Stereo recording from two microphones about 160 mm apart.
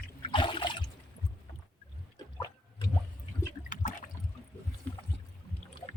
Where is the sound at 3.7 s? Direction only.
55° left (ahead or behind).